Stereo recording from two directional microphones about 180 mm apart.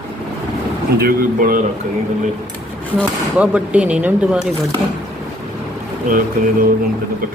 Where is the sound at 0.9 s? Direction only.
55° right (ahead or behind).